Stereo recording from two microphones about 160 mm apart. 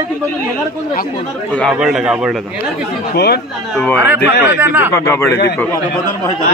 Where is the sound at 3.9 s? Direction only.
15° right (ahead or behind).